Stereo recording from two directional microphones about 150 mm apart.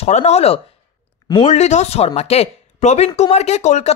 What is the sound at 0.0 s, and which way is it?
Speech, 45° left (ahead or behind).